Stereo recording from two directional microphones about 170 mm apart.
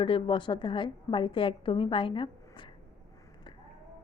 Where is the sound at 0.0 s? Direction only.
30° left (ahead or behind).